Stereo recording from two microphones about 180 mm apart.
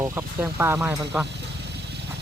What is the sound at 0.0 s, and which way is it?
Speech, 10° right (ahead or behind).